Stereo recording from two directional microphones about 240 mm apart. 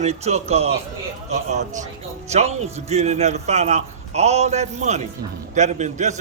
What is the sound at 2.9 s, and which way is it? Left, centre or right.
A man's voice, right.